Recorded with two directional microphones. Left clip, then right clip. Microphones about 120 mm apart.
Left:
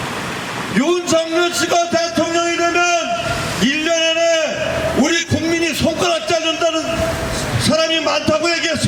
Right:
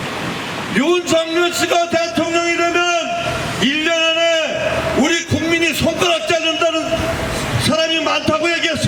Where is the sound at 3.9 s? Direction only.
20° left (ahead or behind).